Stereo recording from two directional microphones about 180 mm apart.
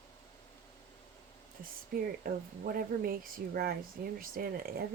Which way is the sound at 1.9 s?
55° right (ahead or behind).